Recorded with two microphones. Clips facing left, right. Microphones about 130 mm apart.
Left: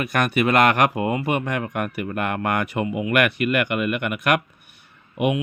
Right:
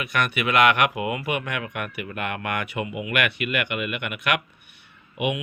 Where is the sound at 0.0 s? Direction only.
40° left (ahead or behind).